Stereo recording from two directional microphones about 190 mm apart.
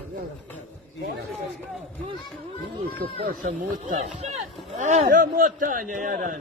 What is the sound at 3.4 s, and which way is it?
A man's voice, 40° right (ahead or behind).